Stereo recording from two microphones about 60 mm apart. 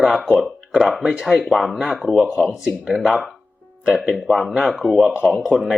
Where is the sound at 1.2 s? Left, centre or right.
Centre.